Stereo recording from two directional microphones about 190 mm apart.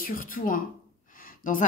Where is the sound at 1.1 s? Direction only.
45° left (ahead or behind).